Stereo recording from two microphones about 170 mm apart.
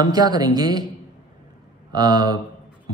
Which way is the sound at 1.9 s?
25° right (ahead or behind).